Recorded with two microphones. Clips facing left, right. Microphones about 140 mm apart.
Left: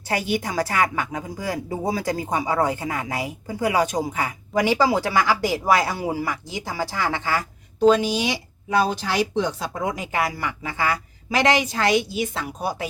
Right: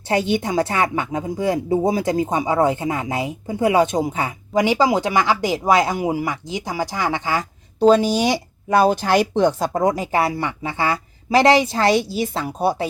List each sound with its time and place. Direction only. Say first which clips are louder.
0.1 s speech: right 5 dB; 25° right (ahead or behind)
7.8 s speech: right 3 dB; 35° right (ahead or behind)